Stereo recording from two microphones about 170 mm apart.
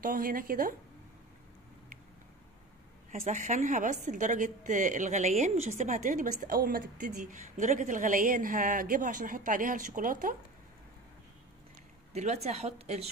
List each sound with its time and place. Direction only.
0.0 s a woman's voice: 55° right (ahead or behind)
3.1 s a woman's voice: 45° right (ahead or behind)
6.4 s a woman's voice: 60° right (ahead or behind)
12.1 s a woman's voice: 40° right (ahead or behind)